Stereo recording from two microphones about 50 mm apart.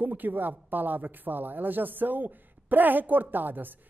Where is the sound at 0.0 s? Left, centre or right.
Right.